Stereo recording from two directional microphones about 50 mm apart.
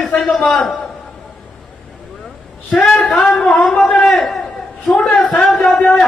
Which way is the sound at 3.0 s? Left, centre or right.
Centre.